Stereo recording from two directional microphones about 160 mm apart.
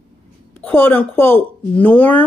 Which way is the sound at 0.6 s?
10° left (ahead or behind).